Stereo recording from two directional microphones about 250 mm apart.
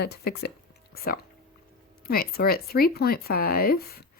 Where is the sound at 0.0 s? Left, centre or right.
Left.